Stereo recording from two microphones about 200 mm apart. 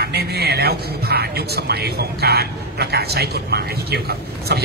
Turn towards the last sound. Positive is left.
turn(degrees=-50)  # may be behind; listen again after turning